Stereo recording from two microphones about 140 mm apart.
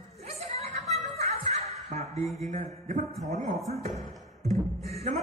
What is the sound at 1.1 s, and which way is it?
Snicker, 50° right (ahead or behind).